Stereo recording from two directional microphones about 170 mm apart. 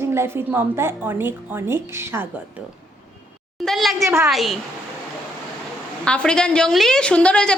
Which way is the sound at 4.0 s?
15° right (ahead or behind).